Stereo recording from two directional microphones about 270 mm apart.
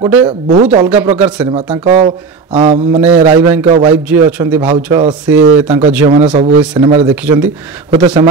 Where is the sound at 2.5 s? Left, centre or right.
Centre.